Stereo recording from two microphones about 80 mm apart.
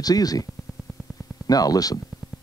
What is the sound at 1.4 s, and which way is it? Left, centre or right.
Speech, left.